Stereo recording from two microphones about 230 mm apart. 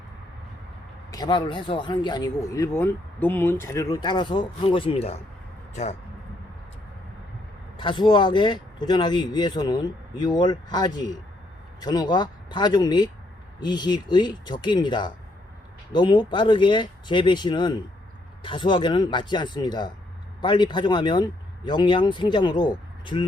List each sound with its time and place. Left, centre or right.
1.1 s speech: centre
7.8 s speech: left